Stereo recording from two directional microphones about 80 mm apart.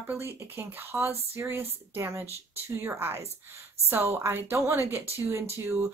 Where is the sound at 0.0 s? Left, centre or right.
Right.